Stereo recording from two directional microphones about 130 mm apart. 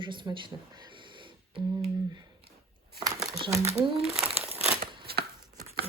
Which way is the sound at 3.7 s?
50° right (ahead or behind).